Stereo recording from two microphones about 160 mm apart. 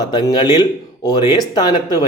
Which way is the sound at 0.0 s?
25° left (ahead or behind).